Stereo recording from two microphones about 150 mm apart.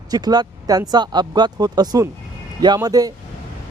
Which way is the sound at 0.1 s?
25° right (ahead or behind).